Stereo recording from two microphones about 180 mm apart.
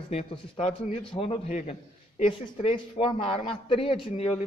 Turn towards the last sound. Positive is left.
turn(degrees=30)  # may be behind; listen again after turning